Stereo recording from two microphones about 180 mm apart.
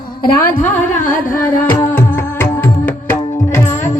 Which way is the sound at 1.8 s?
10° left (ahead or behind).